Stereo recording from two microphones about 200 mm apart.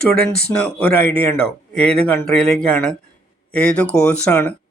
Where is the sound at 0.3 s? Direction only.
5° left (ahead or behind).